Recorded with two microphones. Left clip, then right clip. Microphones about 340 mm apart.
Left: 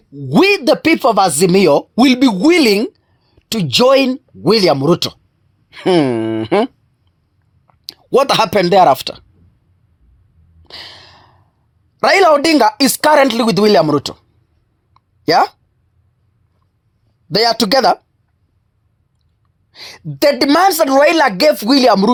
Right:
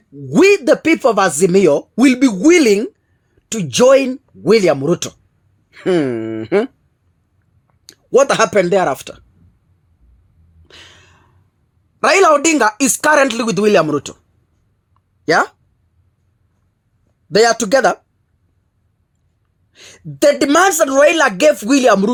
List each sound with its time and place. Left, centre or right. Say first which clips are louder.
0.2 s speech: right 1 dB; left
7.7 s speech: even; left
10.7 s gasp: left 8 dB; left
11.9 s speech: left 1 dB; left
14.9 s a sound: left 2 dB; left
17.3 s speech: right 1 dB; left
19.7 s speech: left 6 dB; left